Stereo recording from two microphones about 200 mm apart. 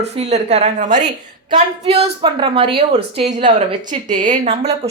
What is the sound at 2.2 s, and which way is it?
A woman's voice, 25° right (ahead or behind).